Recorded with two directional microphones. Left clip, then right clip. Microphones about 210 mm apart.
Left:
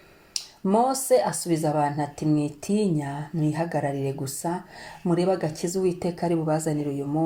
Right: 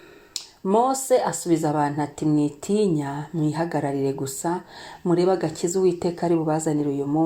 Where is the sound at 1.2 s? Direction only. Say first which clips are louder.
Right 2 dB; 35° right (ahead or behind).